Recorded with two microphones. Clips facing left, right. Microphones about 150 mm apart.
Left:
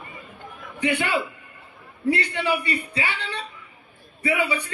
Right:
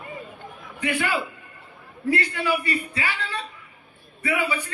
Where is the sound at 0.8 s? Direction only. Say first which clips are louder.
Left 2 dB; 25° left (ahead or behind).